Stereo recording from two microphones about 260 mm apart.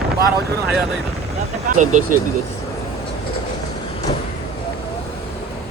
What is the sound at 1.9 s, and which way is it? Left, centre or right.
Speech, right.